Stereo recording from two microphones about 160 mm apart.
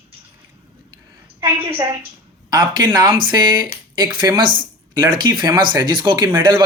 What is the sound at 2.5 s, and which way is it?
A man's voice, 25° right (ahead or behind).